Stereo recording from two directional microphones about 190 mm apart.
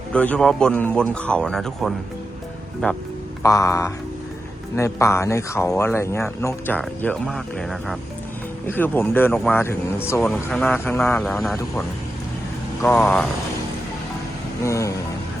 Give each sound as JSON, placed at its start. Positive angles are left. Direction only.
{"t": 0.1, "sound": "speech", "side_deg": 5}
{"t": 3.4, "sound": "speech", "side_deg": 15}
{"t": 11.2, "sound": "speech", "side_deg": 0}
{"t": 12.8, "sound": "speech", "side_deg": 5}
{"t": 14.6, "sound": "speech", "side_deg": 15}